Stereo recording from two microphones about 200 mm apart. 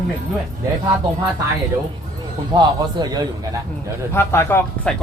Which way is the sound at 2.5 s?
20° right (ahead or behind).